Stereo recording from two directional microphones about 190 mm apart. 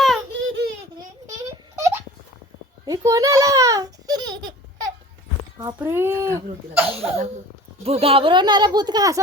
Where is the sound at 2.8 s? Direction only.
15° right (ahead or behind).